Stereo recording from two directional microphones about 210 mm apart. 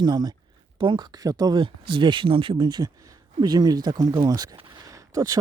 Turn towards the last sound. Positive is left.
turn(degrees=-15)  # may be behind; listen again after turning